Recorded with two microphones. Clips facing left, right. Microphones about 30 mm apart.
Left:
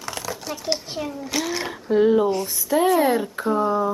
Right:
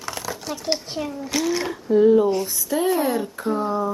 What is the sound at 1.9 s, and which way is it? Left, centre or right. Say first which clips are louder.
Speech: right 2 dB; left.